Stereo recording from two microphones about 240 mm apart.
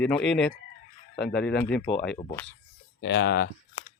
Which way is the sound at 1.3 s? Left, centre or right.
Centre.